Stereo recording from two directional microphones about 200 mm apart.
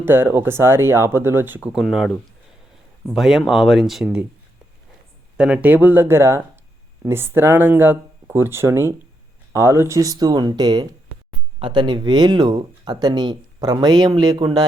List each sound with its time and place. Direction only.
0.0 s speech: 10° right (ahead or behind)
5.4 s speech: 5° right (ahead or behind); by 14.6 s 20° right (ahead or behind)